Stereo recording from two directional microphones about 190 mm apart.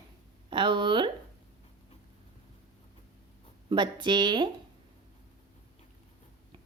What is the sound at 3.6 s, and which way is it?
Speech, 25° right (ahead or behind).